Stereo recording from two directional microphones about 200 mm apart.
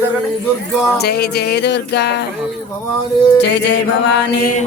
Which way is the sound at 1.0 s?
55° left (ahead or behind).